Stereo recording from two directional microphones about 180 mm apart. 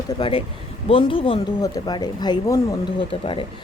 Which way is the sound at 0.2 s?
30° left (ahead or behind).